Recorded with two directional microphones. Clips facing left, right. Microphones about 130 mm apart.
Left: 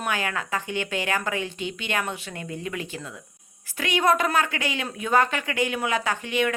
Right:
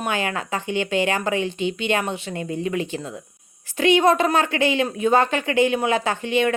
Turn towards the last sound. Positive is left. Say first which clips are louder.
# right 4 dB
turn(degrees=-30)  # may be behind; listen again after turning